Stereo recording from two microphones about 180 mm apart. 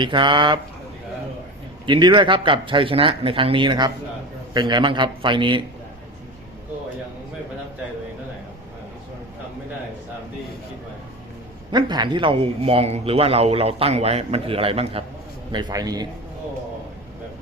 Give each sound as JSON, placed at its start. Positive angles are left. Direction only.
{"t": 0.0, "sound": "speech", "side_deg": -25}
{"t": 1.9, "sound": "speech", "side_deg": -25}
{"t": 11.7, "sound": "a man's voice", "side_deg": -25}
{"t": 15.5, "sound": "speech", "side_deg": -20}